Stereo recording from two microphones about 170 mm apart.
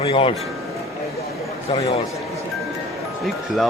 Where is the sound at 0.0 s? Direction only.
30° left (ahead or behind).